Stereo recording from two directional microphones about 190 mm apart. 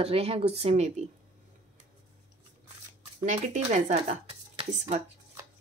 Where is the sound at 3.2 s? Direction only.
40° right (ahead or behind).